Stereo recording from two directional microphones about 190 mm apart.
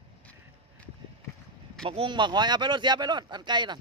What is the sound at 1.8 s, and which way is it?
Speech, 25° right (ahead or behind).